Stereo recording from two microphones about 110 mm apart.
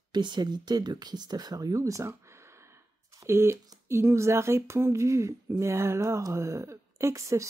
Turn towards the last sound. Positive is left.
turn(degrees=-30)  # may be behind; listen again after turning